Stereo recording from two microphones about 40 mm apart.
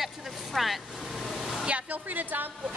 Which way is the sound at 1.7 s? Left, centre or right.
Right.